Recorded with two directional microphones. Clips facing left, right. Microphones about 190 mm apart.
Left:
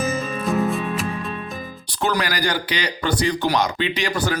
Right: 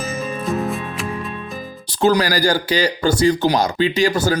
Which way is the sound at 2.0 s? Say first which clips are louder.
Right 7 dB; 30° right (ahead or behind).